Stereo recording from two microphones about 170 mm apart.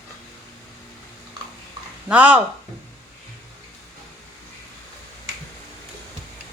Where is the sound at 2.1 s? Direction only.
10° right (ahead or behind).